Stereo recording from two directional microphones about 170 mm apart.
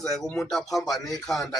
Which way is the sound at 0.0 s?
Centre (ahead or behind).